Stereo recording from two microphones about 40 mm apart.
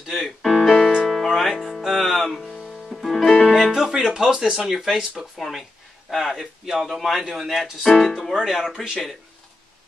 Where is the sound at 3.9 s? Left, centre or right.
Centre.